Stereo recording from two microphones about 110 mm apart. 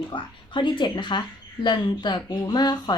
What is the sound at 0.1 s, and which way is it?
Speech, 45° left (ahead or behind).